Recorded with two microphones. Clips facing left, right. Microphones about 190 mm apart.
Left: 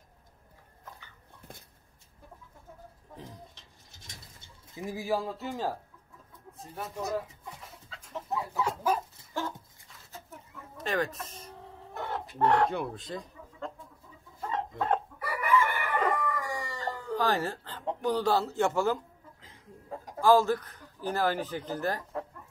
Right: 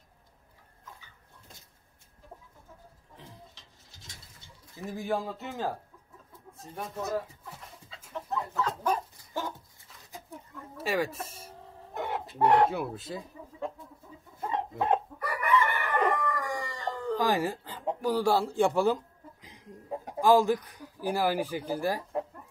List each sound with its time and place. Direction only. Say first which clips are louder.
0.9 s dog: left 2 dB; 60° left (ahead or behind)
4.6 s pigeon: left 2 dB; 15° left (ahead or behind)
4.9 s speech: even; centre (ahead or behind)
7.5 s dog: even; centre (ahead or behind)
8.3 s chicken: even; 15° left (ahead or behind)
10.1 s chicken: right 3 dB; 10° right (ahead or behind)
12.6 s speech: right 1 dB; 5° right (ahead or behind)
14.7 s speech: right 3 dB; 5° right (ahead or behind)
15.1 s chicken: even; 5° left (ahead or behind)
17.2 s speech: right 1 dB; 10° right (ahead or behind)
19.4 s cough: right 3 dB; 15° right (ahead or behind)
20.2 s speech: even; 15° right (ahead or behind)